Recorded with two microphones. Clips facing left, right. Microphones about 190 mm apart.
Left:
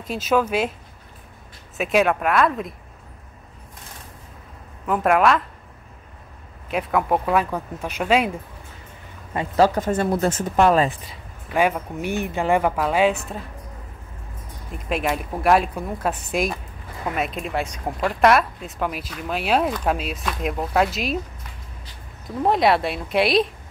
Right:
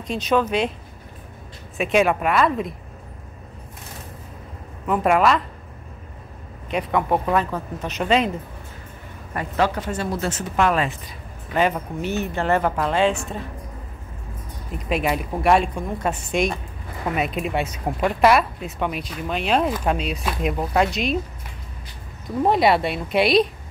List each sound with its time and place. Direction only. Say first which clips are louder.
0.0 s speech: even; 5° left (ahead or behind)
1.8 s speech: right 1 dB; centre (ahead or behind)
4.8 s speech: even; centre (ahead or behind)
6.7 s speech: even; 5° left (ahead or behind)
9.6 s speech: left 5 dB; 50° left (ahead or behind)
10.5 s speech: left 3 dB; 35° left (ahead or behind)
11.5 s speech: even; 10° left (ahead or behind)
14.9 s speech: right 1 dB; centre (ahead or behind)
22.4 s speech: right 1 dB; centre (ahead or behind)